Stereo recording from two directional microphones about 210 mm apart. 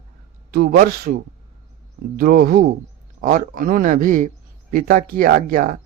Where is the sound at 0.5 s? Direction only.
45° right (ahead or behind).